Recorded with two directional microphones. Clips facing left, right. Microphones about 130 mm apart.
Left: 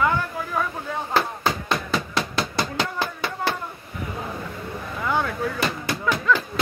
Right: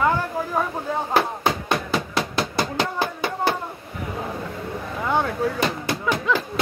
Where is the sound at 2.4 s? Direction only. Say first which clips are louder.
Right 3 dB; 15° right (ahead or behind).